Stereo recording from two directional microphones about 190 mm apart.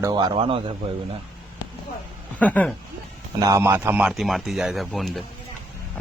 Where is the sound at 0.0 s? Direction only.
25° right (ahead or behind).